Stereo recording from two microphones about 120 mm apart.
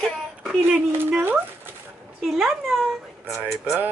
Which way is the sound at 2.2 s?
Centre (ahead or behind).